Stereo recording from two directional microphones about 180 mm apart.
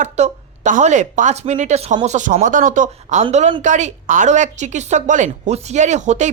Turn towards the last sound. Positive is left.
turn(degrees=-40)  # may be behind; listen again after turning